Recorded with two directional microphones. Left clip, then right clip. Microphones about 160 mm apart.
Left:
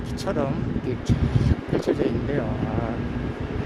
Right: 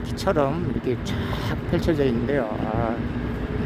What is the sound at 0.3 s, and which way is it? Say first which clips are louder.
Speech: right 5 dB; 20° right (ahead or behind).